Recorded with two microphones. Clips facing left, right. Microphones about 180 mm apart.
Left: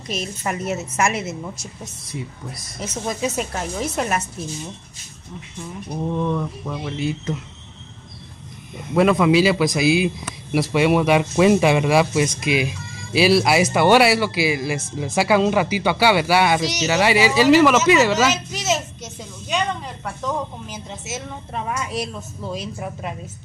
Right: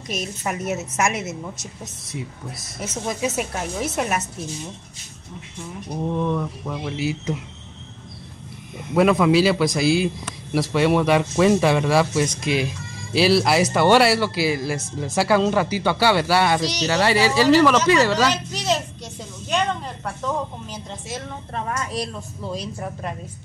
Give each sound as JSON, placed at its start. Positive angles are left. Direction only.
{"t": 0.1, "sound": "a woman's voice", "side_deg": 0}
{"t": 5.9, "sound": "a woman's voice", "side_deg": -5}
{"t": 8.9, "sound": "a woman's voice", "side_deg": 0}
{"t": 16.9, "sound": "speech", "side_deg": 15}
{"t": 18.2, "sound": "a sound", "side_deg": 5}
{"t": 20.9, "sound": "a woman's voice", "side_deg": 5}